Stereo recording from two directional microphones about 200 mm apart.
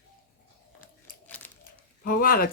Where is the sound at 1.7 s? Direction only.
45° left (ahead or behind).